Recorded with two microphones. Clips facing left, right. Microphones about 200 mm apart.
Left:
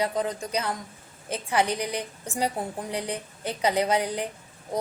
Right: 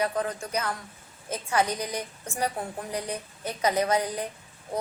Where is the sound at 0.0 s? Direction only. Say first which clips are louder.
Left 1 dB; 15° left (ahead or behind).